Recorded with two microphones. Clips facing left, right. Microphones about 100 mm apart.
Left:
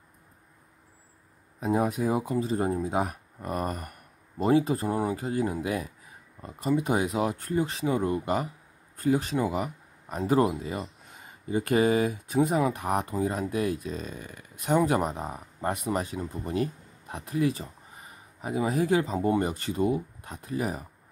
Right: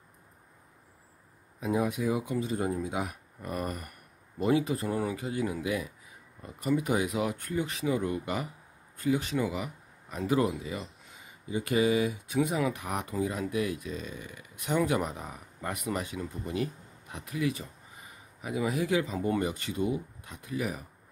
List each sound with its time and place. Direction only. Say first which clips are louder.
1.6 s speech: left 3 dB; 40° left (ahead or behind)